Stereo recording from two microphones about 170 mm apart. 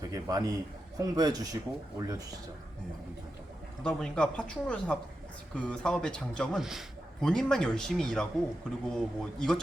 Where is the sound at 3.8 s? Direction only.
5° left (ahead or behind).